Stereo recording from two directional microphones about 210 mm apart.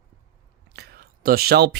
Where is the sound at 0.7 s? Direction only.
50° right (ahead or behind).